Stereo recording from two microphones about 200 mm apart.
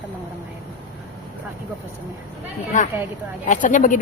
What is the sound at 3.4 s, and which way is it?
Speech, 40° left (ahead or behind).